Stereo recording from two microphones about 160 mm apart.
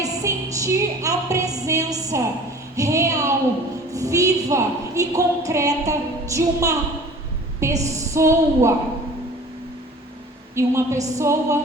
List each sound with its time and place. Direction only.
0.0 s music: 20° right (ahead or behind)
2.7 s a sound: 20° right (ahead or behind)
3.9 s a woman's voice: 20° right (ahead or behind)
10.5 s a woman's voice: 15° right (ahead or behind)